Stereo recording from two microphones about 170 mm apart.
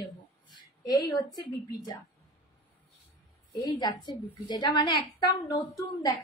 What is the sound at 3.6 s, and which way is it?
A woman's voice, 25° left (ahead or behind).